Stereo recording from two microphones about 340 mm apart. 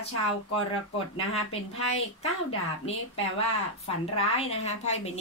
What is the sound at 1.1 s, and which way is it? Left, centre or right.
Speech, centre.